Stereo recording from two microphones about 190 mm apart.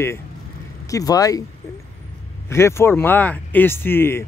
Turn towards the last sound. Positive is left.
turn(degrees=10)  # may be behind; listen again after turning